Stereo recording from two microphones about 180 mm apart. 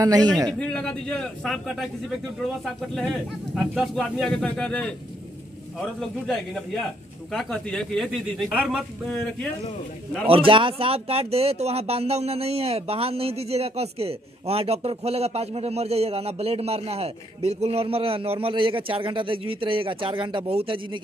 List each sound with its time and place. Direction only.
0.0 s a man's voice: 20° right (ahead or behind)
0.5 s speech: 5° left (ahead or behind)
10.2 s speech: 30° right (ahead or behind)